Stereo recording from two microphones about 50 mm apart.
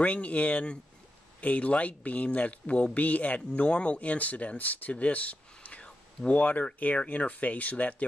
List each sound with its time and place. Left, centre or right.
0.0 s speech: left